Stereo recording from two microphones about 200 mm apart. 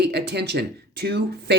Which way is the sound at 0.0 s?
55° right (ahead or behind).